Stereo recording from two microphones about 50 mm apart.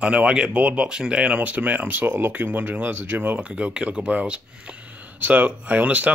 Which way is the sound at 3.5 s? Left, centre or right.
Right.